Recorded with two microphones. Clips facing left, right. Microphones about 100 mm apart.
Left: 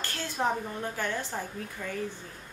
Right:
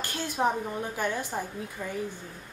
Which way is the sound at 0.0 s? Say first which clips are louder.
Right 3 dB; 15° right (ahead or behind).